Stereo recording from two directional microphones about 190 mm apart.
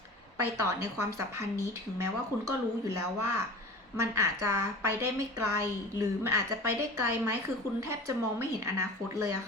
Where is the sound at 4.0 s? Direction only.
15° right (ahead or behind).